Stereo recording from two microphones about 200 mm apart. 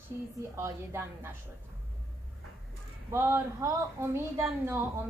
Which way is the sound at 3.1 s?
10° right (ahead or behind).